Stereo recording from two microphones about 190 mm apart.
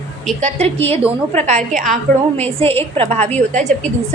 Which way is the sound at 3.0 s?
35° right (ahead or behind).